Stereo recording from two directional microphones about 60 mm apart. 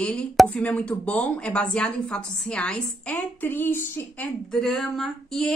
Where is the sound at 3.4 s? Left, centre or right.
Left.